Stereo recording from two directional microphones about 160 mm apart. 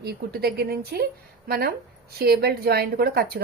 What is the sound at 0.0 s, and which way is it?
A woman's voice, 75° right (ahead or behind).